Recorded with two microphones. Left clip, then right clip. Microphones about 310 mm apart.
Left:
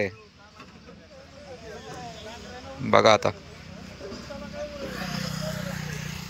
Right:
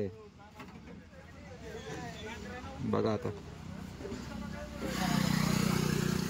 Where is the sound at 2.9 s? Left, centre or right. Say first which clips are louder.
Left 15 dB; left.